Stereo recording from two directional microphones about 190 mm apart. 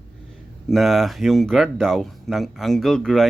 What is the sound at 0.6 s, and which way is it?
Speech, centre (ahead or behind).